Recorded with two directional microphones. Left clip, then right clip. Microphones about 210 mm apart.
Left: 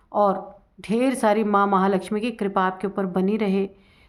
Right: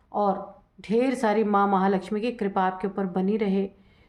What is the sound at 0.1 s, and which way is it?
A woman's voice, 30° left (ahead or behind).